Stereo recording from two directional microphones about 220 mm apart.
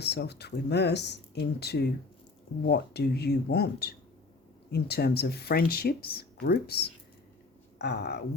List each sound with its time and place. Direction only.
0.0 s speech: 50° left (ahead or behind)